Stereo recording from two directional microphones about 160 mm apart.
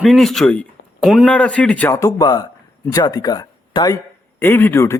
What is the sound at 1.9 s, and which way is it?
A man's voice, 20° left (ahead or behind).